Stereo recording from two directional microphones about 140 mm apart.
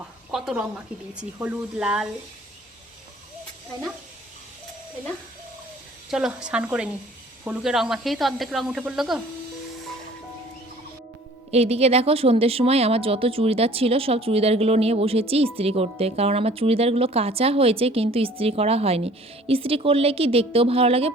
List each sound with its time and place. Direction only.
0.3 s a sound: 5° right (ahead or behind)
1.1 s speech: 10° right (ahead or behind)
6.1 s speech: 5° right (ahead or behind)
11.5 s a woman's voice: 45° right (ahead or behind)